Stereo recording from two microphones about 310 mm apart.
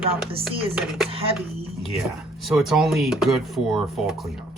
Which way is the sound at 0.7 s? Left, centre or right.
Centre.